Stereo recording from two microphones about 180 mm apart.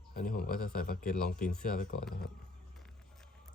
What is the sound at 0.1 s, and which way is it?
Speech, 55° left (ahead or behind).